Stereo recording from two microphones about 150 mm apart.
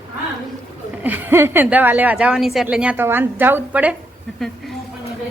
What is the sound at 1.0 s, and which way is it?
A woman's voice, 10° right (ahead or behind).